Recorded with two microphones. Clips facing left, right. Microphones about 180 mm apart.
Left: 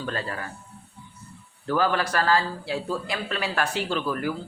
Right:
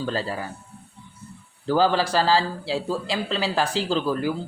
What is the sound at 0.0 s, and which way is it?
Speech, 30° right (ahead or behind).